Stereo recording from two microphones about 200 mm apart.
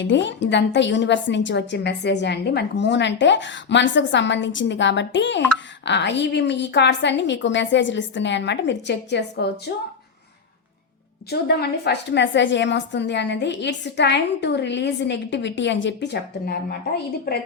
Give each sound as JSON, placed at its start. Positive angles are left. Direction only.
{"t": 0.0, "sound": "a woman's voice", "side_deg": 65}
{"t": 11.3, "sound": "a woman's voice", "side_deg": 55}